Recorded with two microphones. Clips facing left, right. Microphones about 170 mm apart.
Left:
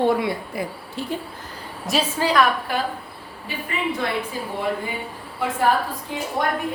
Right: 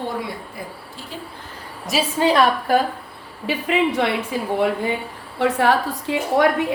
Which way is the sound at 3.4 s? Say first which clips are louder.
Right 7 dB; 85° right.